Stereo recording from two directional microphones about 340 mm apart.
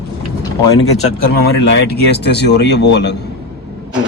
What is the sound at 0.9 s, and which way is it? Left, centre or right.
Speech, left.